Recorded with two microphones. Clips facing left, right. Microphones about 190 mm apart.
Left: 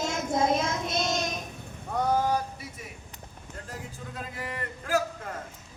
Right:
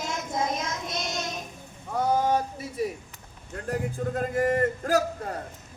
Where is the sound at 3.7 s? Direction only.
50° right (ahead or behind).